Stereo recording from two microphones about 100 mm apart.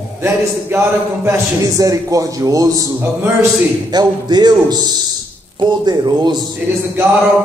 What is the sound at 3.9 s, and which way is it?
A man's voice, 45° right (ahead or behind).